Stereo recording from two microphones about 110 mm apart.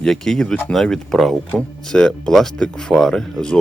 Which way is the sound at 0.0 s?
5° left (ahead or behind).